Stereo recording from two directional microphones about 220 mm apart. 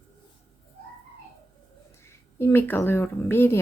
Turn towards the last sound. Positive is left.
turn(degrees=10)  # may be behind; listen again after turning